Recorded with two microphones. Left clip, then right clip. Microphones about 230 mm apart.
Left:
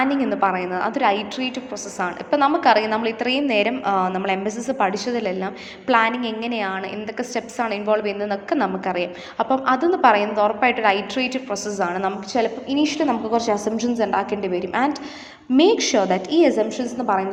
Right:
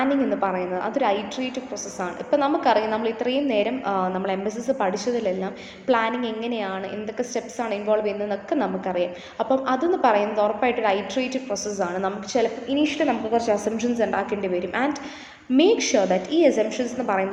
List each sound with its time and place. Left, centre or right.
0.0 s a woman's voice: centre